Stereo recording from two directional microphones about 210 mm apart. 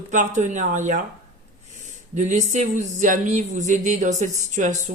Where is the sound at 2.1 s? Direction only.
35° right (ahead or behind).